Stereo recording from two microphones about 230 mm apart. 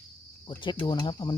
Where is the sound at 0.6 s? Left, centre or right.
Centre.